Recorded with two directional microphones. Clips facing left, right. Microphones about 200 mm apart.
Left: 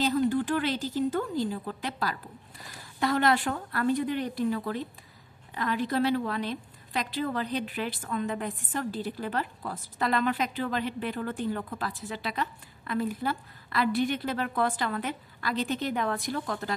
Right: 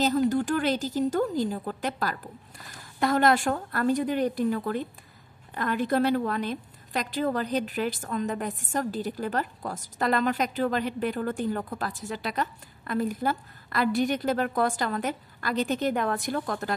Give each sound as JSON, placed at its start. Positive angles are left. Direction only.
{"t": 0.3, "sound": "a woman's voice", "side_deg": -45}